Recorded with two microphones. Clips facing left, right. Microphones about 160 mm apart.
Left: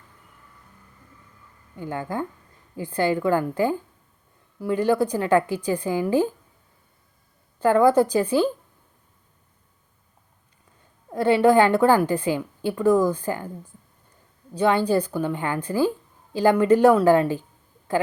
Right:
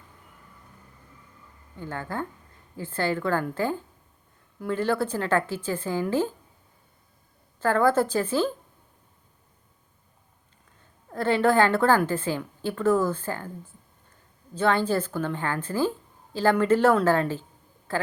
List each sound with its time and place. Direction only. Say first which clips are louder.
1.7 s a woman's voice: left 4 dB; 15° left (ahead or behind)
7.6 s a woman's voice: left 5 dB; 15° left (ahead or behind)
11.1 s a woman's voice: left 5 dB; 15° left (ahead or behind)
14.5 s a woman's voice: left 3 dB; 15° left (ahead or behind)